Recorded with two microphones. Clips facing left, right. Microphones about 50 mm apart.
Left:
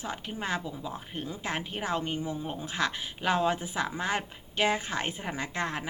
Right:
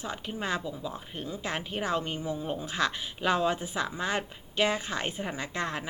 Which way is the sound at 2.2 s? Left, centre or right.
Centre.